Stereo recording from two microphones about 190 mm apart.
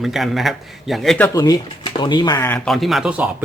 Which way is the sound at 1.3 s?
20° left (ahead or behind).